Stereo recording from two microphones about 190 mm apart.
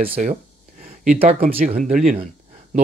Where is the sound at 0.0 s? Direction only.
45° right (ahead or behind).